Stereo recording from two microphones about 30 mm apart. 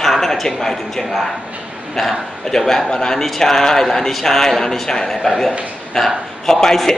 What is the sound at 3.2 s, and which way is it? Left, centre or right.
A man's voice, centre.